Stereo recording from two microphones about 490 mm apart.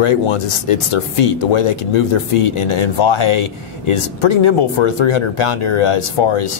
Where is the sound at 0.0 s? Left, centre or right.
Left.